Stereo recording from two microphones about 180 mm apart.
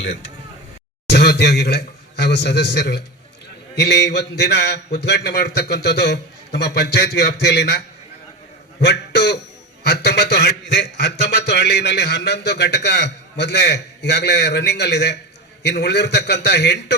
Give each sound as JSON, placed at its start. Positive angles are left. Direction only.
{"t": 1.1, "sound": "a man's voice", "side_deg": 70}
{"t": 8.8, "sound": "a man's voice", "side_deg": 70}